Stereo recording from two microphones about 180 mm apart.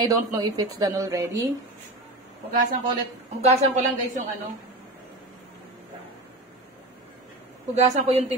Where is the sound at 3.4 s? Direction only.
35° right (ahead or behind).